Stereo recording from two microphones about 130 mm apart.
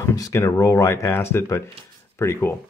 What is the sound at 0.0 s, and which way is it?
Speech, 25° left (ahead or behind).